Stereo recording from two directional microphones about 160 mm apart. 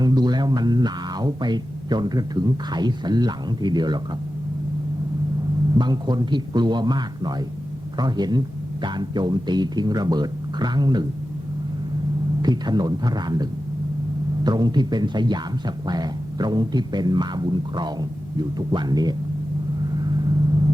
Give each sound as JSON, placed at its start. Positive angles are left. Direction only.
{"t": 0.0, "sound": "speech", "side_deg": -25}
{"t": 5.7, "sound": "speech", "side_deg": -25}
{"t": 12.4, "sound": "speech", "side_deg": -25}